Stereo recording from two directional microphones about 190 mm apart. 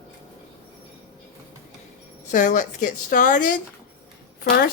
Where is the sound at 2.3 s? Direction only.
40° left (ahead or behind).